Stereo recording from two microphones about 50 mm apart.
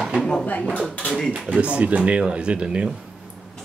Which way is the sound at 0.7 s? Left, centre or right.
Left.